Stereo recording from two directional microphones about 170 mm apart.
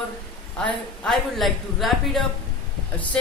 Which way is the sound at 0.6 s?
5° left (ahead or behind).